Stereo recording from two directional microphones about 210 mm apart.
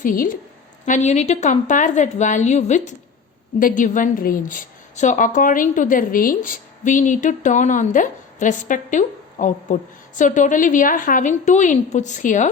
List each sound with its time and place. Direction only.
0.0 s a woman's voice: 40° left (ahead or behind)